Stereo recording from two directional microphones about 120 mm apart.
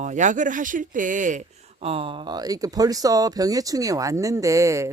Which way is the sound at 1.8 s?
50° right (ahead or behind).